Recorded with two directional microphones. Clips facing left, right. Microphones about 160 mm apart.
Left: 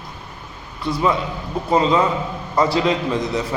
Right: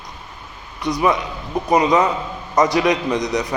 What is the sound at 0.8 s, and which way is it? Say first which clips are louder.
A man's voice: right 1 dB; 15° right (ahead or behind).